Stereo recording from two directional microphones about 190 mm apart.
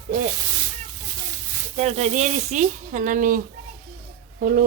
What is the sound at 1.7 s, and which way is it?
Speech, 35° right (ahead or behind).